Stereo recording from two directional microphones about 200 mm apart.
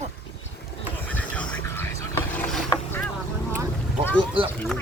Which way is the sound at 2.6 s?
10° left (ahead or behind).